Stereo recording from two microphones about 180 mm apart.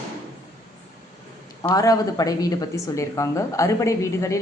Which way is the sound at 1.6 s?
20° left (ahead or behind).